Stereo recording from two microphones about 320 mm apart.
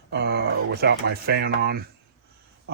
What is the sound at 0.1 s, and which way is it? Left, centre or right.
Speech, right.